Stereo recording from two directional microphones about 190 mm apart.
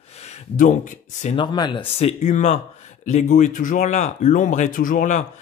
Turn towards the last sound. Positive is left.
turn(degrees=45)  # may be behind; listen again after turning